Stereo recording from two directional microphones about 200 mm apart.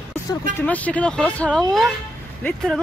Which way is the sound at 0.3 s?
10° left (ahead or behind).